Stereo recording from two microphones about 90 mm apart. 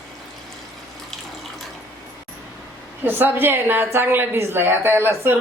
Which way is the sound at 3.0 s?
25° right (ahead or behind).